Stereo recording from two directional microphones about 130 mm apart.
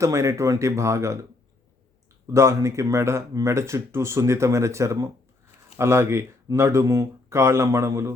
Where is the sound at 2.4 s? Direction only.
20° right (ahead or behind).